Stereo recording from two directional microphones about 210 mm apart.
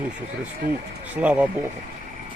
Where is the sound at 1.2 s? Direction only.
5° right (ahead or behind).